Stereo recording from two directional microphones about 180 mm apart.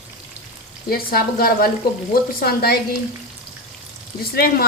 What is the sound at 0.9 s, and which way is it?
Speech, 55° left (ahead or behind).